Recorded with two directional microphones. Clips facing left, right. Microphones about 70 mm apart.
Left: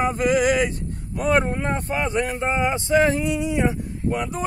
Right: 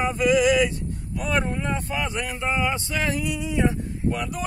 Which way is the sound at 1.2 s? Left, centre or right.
Left.